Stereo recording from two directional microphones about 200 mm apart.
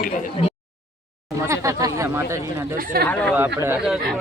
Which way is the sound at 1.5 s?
15° right (ahead or behind).